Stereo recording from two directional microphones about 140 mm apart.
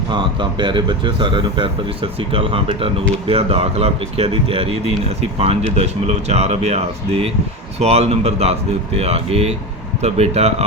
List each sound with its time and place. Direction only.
0.1 s speech: 35° right (ahead or behind)